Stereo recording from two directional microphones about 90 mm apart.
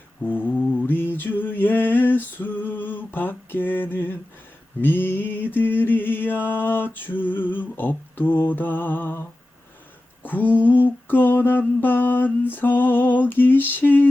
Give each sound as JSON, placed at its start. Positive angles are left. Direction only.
{"t": 0.2, "sound": "mantra", "side_deg": 20}
{"t": 4.8, "sound": "music", "side_deg": 20}
{"t": 10.2, "sound": "a sound", "side_deg": 20}